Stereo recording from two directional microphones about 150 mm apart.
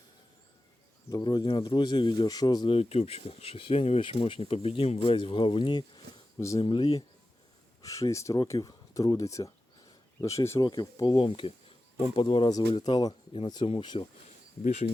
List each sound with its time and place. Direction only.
1.1 s speech: 30° left (ahead or behind)
7.8 s speech: 20° left (ahead or behind)
14.6 s speech: 50° left (ahead or behind)